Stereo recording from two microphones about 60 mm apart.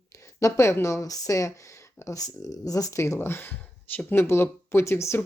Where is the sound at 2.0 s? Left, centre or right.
Left.